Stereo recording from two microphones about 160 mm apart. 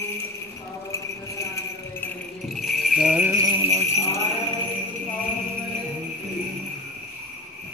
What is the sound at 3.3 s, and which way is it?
Jingle bell, 20° right (ahead or behind).